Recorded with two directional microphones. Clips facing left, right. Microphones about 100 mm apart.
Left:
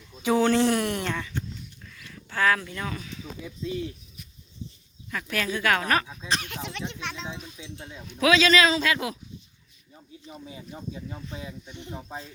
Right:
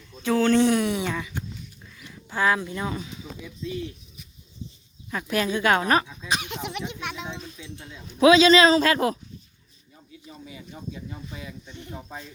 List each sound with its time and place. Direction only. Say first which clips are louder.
0.2 s speech: even; 15° left (ahead or behind)
0.5 s speech: right 3 dB; centre (ahead or behind); by 3.2 s 20° right (ahead or behind)
3.4 s speech: left 1 dB; 35° left (ahead or behind)
5.1 s a woman's voice: right 4 dB; 20° right (ahead or behind)
6.2 s speech: right 2 dB; 10° right (ahead or behind)
7.3 s speech: right 1 dB; 10° left (ahead or behind)
7.6 s speech: even; 25° left (ahead or behind)
8.0 s a woman's voice: right 6 dB; 25° right (ahead or behind)
8.7 s speech: right 6 dB; 40° right (ahead or behind)
11.6 s speech: even; 20° left (ahead or behind)